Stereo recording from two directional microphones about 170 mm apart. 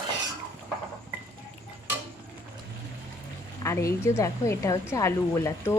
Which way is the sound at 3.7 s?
15° left (ahead or behind).